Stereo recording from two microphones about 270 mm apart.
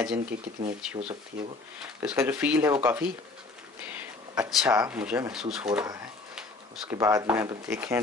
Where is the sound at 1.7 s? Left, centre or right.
Centre.